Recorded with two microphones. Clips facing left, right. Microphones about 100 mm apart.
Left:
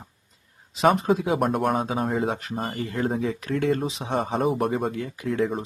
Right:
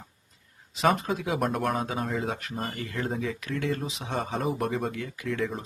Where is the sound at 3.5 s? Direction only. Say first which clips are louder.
Left 7 dB; 45° left (ahead or behind).